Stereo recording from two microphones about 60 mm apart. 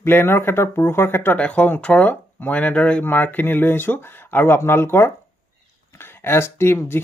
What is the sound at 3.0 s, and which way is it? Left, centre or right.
Speech, left.